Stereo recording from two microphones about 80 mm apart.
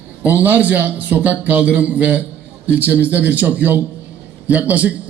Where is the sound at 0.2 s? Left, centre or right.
Right.